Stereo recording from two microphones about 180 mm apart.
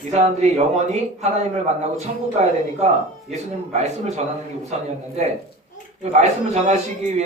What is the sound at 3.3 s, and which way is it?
A man's voice, 40° right (ahead or behind).